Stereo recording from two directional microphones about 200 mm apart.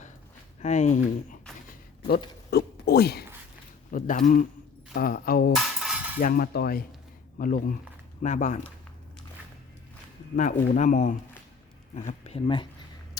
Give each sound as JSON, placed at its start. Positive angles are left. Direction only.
{"t": 0.6, "sound": "speech", "side_deg": 35}
{"t": 2.5, "sound": "speech", "side_deg": 55}
{"t": 3.9, "sound": "speech", "side_deg": 40}
{"t": 5.5, "sound": "cutlery", "side_deg": 0}
{"t": 6.1, "sound": "speech", "side_deg": 45}
{"t": 10.3, "sound": "speech", "side_deg": 40}